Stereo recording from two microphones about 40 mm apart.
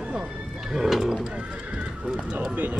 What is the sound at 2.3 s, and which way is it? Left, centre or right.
Speech, right.